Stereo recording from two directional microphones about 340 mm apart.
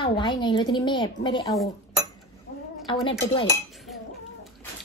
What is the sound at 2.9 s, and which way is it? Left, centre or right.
Speech, centre.